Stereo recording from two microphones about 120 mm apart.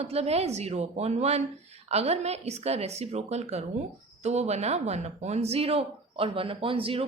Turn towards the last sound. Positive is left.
turn(degrees=-50)  # may be behind; listen again after turning